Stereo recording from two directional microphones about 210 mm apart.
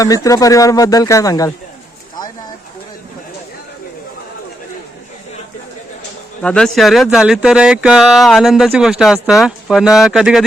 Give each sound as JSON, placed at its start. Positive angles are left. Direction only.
{"t": 0.0, "sound": "speech", "side_deg": 15}
{"t": 6.4, "sound": "speech", "side_deg": 5}